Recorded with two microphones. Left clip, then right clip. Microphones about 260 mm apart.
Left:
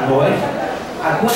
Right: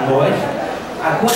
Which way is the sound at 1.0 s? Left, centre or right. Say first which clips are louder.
Right 1 dB; centre.